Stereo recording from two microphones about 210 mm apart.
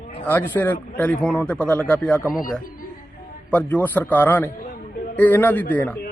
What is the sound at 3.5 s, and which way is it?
A man's voice, 5° left (ahead or behind).